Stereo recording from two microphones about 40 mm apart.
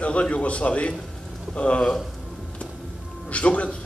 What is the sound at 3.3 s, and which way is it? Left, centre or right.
Speech, left.